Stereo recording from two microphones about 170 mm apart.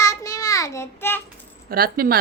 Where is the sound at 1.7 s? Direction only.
60° right (ahead or behind).